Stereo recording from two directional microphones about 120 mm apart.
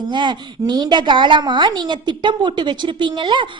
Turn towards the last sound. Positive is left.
turn(degrees=-40)  # may be behind; listen again after turning